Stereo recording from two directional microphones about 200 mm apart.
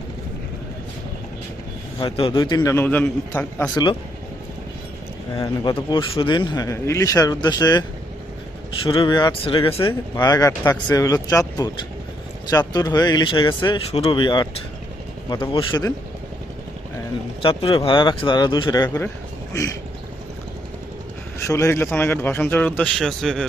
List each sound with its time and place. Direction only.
2.0 s speech: 25° left (ahead or behind); by 3.7 s 5° left (ahead or behind)
5.3 s speech: 20° left (ahead or behind)
17.4 s speech: 25° left (ahead or behind)
21.4 s a man's voice: 15° left (ahead or behind)